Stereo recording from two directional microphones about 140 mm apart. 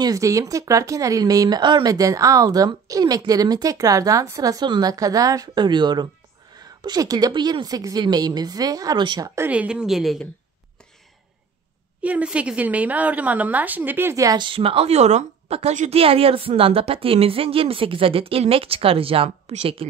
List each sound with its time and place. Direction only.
0.0 s speech: 25° right (ahead or behind)
9.3 s speech: 15° right (ahead or behind)
12.0 s a woman's voice: 10° right (ahead or behind); by 19.9 s 45° right (ahead or behind)